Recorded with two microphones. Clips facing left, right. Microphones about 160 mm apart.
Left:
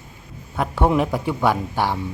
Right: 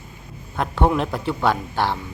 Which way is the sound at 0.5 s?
10° left (ahead or behind).